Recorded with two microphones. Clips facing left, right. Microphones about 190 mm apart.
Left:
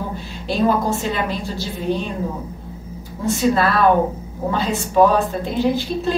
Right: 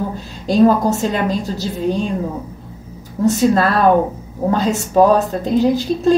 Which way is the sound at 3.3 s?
40° right (ahead or behind).